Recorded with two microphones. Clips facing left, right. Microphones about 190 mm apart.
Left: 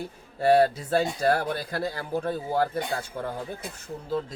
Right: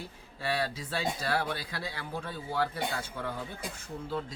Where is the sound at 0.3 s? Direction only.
50° left (ahead or behind).